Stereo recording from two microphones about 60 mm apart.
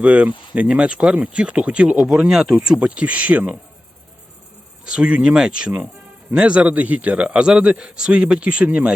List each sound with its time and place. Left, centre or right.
0.0 s a man's voice: centre
2.0 s a man's voice: centre; by 3.6 s right
4.9 s a man's voice: centre